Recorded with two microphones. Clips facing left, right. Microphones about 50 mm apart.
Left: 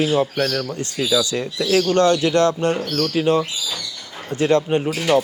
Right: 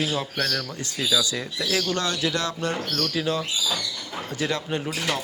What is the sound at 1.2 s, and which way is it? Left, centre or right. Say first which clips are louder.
Speech: left 6 dB; left.